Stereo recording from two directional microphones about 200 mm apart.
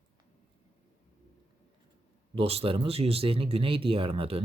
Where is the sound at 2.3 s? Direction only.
30° right (ahead or behind).